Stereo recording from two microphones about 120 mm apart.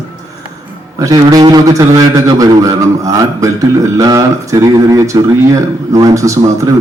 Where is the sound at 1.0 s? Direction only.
30° right (ahead or behind).